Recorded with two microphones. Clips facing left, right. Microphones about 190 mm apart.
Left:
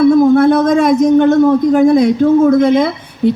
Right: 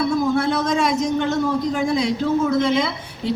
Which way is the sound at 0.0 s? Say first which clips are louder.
Left 12 dB; 55° left (ahead or behind).